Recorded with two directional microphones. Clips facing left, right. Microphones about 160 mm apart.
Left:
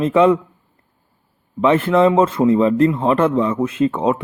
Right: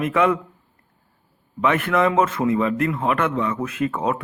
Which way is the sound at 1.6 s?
30° left (ahead or behind).